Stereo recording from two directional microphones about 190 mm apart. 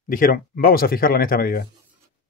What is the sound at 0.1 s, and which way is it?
Speech, 50° left (ahead or behind).